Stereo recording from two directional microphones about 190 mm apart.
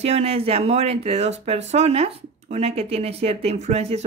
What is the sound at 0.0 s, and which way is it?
Speech, 35° right (ahead or behind).